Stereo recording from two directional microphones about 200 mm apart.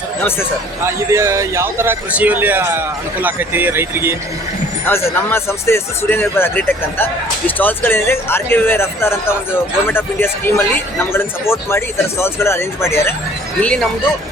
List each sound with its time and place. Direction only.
0.9 s a man's voice: 15° right (ahead or behind)
4.9 s speech: 10° left (ahead or behind)